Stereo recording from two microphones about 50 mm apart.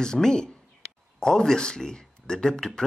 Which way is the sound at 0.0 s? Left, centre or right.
Centre.